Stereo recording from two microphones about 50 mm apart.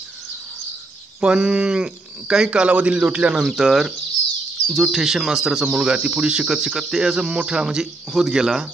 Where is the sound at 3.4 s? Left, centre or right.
Centre.